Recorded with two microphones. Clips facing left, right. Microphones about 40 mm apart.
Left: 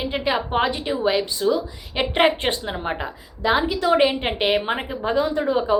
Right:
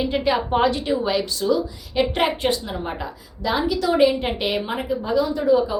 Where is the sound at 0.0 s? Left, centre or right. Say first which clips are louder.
Right 2 dB; centre.